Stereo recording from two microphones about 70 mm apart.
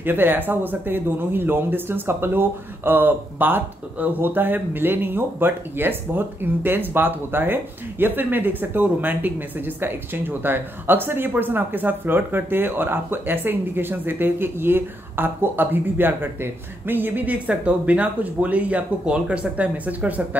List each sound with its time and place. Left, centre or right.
0.0 s speech: right